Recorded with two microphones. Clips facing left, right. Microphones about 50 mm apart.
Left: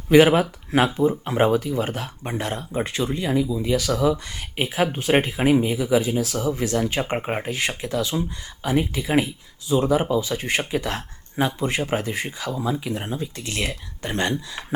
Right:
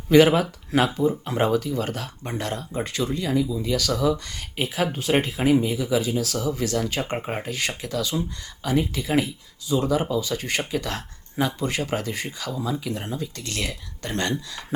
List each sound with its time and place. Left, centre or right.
0.1 s speech: left